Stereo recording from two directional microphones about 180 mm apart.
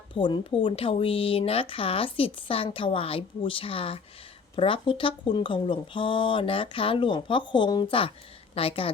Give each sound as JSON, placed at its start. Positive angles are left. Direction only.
{"t": 0.2, "sound": "speech", "side_deg": 25}